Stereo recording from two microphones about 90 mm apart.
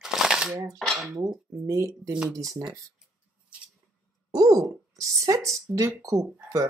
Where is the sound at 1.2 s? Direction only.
40° right (ahead or behind).